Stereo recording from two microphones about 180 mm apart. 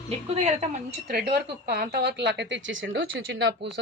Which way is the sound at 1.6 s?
60° right (ahead or behind).